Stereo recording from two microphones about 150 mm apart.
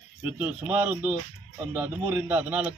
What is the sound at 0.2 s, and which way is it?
Speech, 10° right (ahead or behind).